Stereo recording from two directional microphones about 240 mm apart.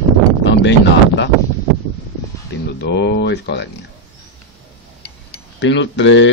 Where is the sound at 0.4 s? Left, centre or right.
Left.